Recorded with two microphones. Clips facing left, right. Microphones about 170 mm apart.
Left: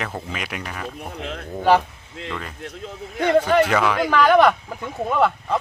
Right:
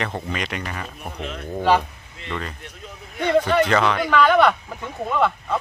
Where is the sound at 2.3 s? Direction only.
Centre (ahead or behind).